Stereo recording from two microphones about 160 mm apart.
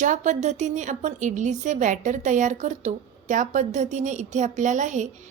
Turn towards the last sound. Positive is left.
turn(degrees=-50)  # may be behind; listen again after turning